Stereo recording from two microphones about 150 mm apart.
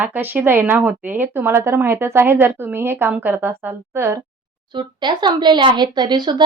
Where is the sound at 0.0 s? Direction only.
10° right (ahead or behind).